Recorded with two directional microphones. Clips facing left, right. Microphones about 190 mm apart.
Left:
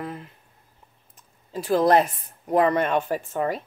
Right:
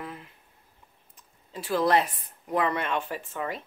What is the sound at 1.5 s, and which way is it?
A woman's voice, 40° left (ahead or behind).